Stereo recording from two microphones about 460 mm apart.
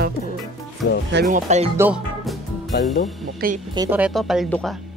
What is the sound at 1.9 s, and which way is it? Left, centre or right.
Music, centre.